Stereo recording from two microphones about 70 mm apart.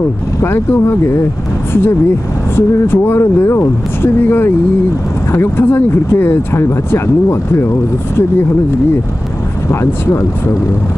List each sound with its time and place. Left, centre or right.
0.4 s speech: left